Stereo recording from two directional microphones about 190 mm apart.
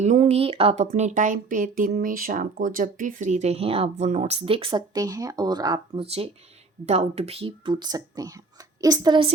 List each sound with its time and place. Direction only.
0.0 s speech: 35° right (ahead or behind)